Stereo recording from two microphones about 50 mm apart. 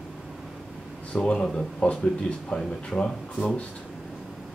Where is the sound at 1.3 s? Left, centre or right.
Centre.